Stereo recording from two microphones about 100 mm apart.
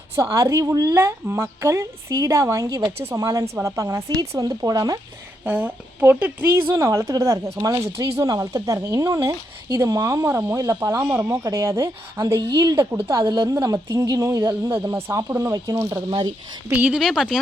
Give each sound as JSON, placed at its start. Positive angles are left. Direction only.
{"t": 0.2, "sound": "speech", "side_deg": -30}
{"t": 5.5, "sound": "speech", "side_deg": -20}
{"t": 13.0, "sound": "a woman's voice", "side_deg": -55}
{"t": 13.5, "sound": "speech", "side_deg": -35}
{"t": 16.0, "sound": "a woman's voice", "side_deg": -45}
{"t": 16.7, "sound": "speech", "side_deg": -15}
{"t": 17.0, "sound": "speech", "side_deg": -5}